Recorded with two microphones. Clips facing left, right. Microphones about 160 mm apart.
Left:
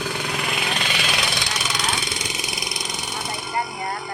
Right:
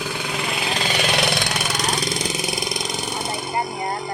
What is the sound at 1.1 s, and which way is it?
Vehicle, 55° right (ahead or behind).